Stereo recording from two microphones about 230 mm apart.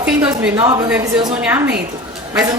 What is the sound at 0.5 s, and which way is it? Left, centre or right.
A woman's voice, centre.